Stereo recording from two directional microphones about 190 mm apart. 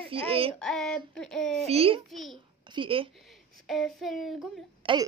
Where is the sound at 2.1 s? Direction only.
Centre (ahead or behind).